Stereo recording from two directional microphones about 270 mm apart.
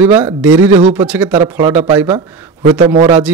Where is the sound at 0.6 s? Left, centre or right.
Centre.